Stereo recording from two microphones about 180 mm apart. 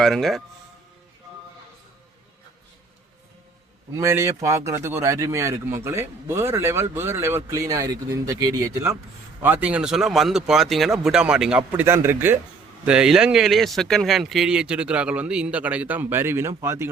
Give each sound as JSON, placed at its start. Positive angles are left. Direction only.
{"t": 0.0, "sound": "speech", "side_deg": 0}
{"t": 3.9, "sound": "speech", "side_deg": -15}